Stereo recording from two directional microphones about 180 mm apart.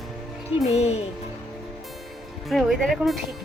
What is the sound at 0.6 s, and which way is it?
Speech, 35° left (ahead or behind).